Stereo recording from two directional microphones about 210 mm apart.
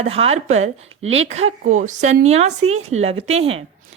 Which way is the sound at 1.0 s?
70° right (ahead or behind).